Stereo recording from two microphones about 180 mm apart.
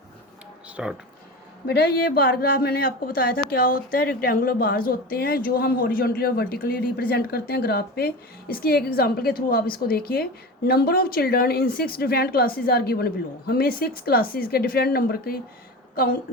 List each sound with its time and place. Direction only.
0.8 s speech: 5° right (ahead or behind)
1.6 s a woman's voice: 60° left (ahead or behind)